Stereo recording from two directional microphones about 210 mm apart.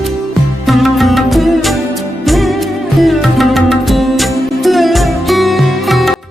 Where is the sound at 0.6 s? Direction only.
Centre (ahead or behind).